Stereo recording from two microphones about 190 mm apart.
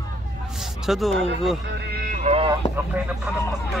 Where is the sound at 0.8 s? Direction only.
Centre (ahead or behind).